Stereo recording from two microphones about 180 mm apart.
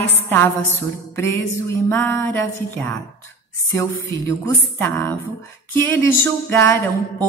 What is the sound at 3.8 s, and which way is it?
A woman's voice, 15° left (ahead or behind).